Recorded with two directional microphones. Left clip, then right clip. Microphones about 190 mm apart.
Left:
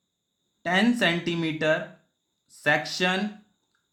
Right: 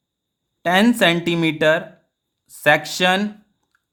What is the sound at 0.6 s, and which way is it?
Speech, 45° right (ahead or behind).